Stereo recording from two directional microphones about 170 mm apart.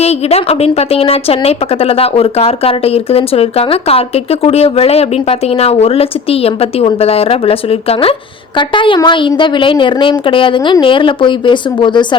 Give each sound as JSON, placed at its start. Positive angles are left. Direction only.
{"t": 0.0, "sound": "a woman's voice", "side_deg": 40}